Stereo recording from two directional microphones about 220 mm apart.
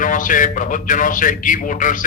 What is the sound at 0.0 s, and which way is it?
A man's voice, 35° left (ahead or behind).